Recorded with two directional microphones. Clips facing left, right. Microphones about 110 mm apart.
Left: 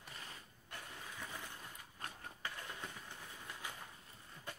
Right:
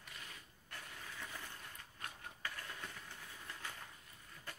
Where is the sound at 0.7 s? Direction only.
15° left (ahead or behind).